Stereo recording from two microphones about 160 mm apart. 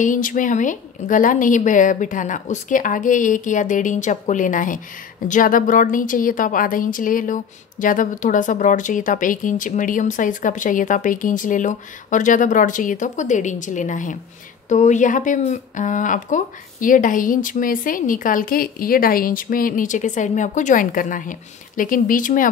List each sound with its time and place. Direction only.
0.0 s a woman's voice: 55° left (ahead or behind)